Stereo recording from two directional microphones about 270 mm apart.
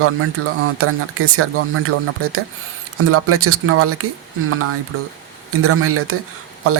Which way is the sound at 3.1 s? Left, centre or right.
Right.